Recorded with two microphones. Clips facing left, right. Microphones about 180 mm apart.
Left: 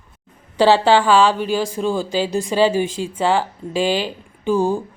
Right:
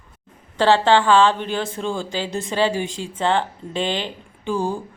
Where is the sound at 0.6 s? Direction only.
15° left (ahead or behind).